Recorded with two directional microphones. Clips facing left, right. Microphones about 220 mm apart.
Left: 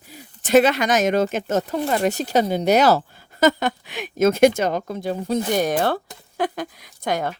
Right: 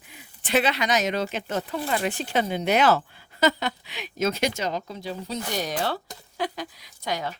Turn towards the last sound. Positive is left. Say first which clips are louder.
# left 6 dB
turn(degrees=50)  # may be behind; listen again after turning